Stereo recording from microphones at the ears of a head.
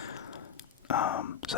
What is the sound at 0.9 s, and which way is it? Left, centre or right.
Speech, left.